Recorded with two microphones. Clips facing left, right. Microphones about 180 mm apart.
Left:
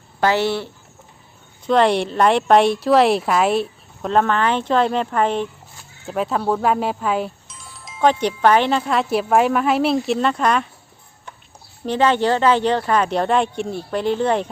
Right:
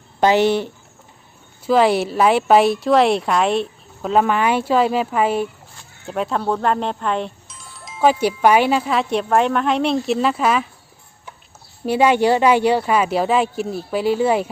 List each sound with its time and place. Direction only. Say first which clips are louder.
0.2 s speech: right 4 dB; 20° right (ahead or behind)
1.6 s speech: right 1 dB; 5° right (ahead or behind)
11.9 s speech: right 2 dB; 10° right (ahead or behind)